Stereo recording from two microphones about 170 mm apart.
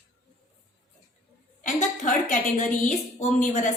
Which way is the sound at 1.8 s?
45° left (ahead or behind).